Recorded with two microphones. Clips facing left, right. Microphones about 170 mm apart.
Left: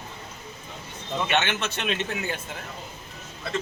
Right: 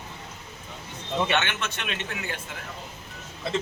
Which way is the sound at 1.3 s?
25° left (ahead or behind).